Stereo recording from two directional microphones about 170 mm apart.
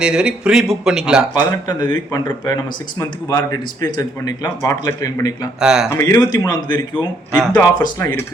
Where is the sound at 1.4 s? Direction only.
25° left (ahead or behind).